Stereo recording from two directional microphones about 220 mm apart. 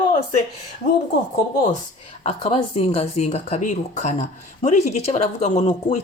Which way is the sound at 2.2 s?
30° left (ahead or behind).